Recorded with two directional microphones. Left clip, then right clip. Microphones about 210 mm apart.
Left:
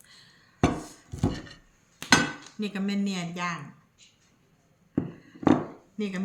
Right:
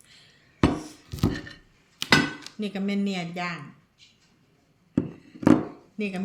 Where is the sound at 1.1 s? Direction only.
25° right (ahead or behind).